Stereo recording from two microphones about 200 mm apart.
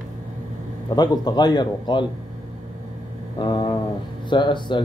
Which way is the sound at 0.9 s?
20° left (ahead or behind).